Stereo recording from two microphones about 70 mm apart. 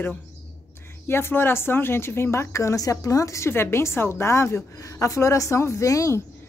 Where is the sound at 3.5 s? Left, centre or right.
Left.